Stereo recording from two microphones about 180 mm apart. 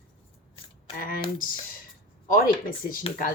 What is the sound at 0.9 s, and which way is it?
A woman's voice, 50° left (ahead or behind).